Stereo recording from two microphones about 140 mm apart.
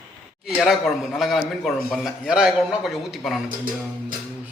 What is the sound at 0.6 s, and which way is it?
A man's voice, centre (ahead or behind).